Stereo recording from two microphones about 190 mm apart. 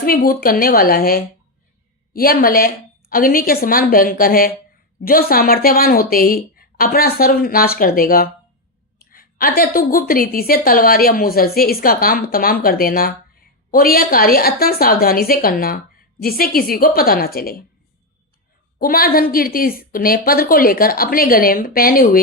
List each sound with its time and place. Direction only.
0.0 s a woman's voice: 50° left (ahead or behind)
18.8 s a woman's voice: 50° left (ahead or behind)